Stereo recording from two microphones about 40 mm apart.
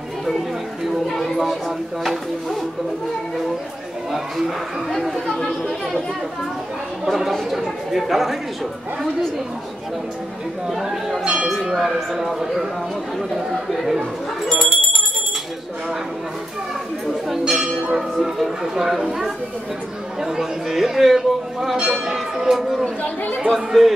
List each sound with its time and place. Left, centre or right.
1.0 s speech: centre
5.5 s speech: centre
7.1 s speech: centre
10.7 s speech: centre
17.3 s bell: centre
18.2 s speech: centre
21.7 s speech: right
22.0 s speech: centre
23.0 s speech: left
23.5 s speech: centre